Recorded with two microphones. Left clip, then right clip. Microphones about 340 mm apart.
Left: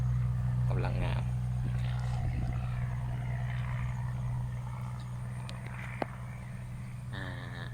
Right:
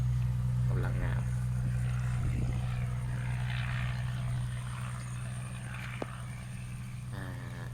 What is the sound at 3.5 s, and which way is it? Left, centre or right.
Vehicle, centre.